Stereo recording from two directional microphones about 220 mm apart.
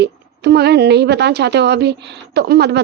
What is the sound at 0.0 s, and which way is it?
Speech, 50° right (ahead or behind).